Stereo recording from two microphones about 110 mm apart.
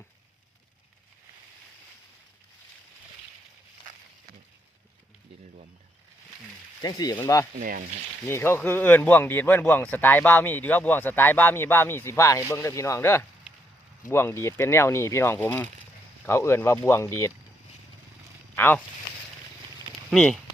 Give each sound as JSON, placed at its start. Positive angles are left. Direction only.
{"t": 6.8, "sound": "speech", "side_deg": 35}
{"t": 8.3, "sound": "speech", "side_deg": 20}
{"t": 18.5, "sound": "speech", "side_deg": 15}
{"t": 20.1, "sound": "speech", "side_deg": 5}